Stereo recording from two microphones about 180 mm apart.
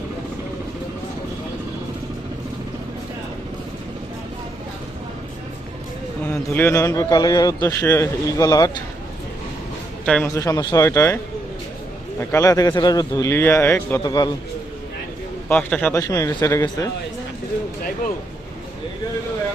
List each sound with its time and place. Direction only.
6.2 s a man's voice: 10° left (ahead or behind)
10.2 s a man's voice: 15° left (ahead or behind)
12.2 s speech: 15° left (ahead or behind)
15.4 s a man's voice: 10° left (ahead or behind)